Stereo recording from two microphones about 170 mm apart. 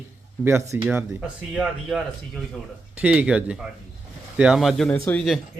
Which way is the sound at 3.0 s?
5° right (ahead or behind).